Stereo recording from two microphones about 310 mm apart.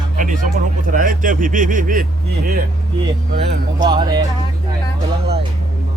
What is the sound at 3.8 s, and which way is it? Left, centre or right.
Speech, centre.